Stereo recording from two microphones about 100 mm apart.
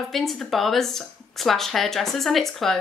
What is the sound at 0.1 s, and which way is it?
A woman's voice, centre (ahead or behind).